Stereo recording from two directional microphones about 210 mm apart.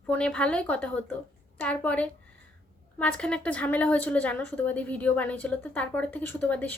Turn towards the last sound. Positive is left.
turn(degrees=5)  # may be behind; listen again after turning